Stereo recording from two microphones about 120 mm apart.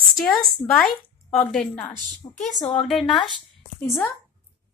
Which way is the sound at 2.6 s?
70° left (ahead or behind).